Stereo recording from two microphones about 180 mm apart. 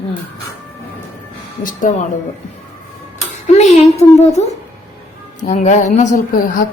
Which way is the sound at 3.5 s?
40° left (ahead or behind).